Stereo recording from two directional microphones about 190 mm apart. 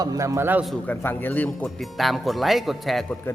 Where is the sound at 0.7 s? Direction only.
10° left (ahead or behind).